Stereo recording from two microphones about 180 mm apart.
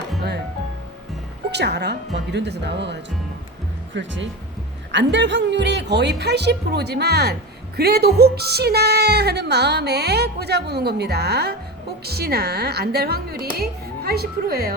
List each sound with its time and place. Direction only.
1.5 s a woman's voice: 65° right (ahead or behind)
3.9 s a woman's voice: 90° right; by 7.3 s 65° right (ahead or behind)
7.8 s music: 60° right (ahead or behind)